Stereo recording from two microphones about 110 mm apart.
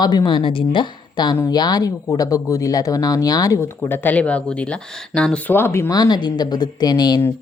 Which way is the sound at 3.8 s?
20° left (ahead or behind).